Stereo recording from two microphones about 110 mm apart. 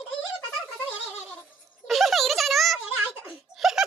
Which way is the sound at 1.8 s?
Centre (ahead or behind).